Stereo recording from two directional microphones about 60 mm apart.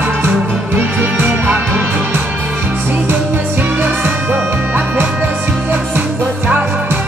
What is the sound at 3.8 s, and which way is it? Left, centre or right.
Music, right.